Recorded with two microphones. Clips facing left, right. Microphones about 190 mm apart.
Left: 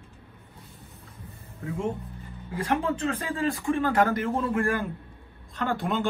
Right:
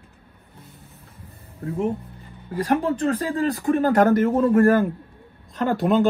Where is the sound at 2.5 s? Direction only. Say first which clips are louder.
Right 5 dB; 35° right (ahead or behind).